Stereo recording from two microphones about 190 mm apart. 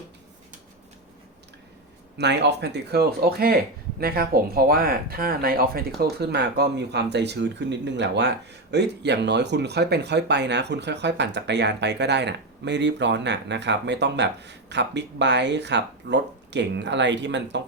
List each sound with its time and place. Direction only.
2.1 s speech: 65° right (ahead or behind)